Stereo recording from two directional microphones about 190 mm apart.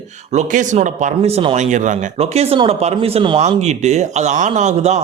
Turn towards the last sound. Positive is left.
turn(degrees=-35)  # may be behind; listen again after turning